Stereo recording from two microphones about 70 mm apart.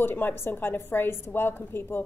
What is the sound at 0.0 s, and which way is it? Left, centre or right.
A woman's voice, left.